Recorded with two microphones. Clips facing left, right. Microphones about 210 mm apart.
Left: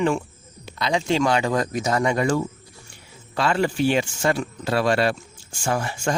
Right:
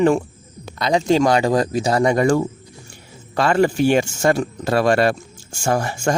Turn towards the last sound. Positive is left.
turn(degrees=-45)  # may be behind; listen again after turning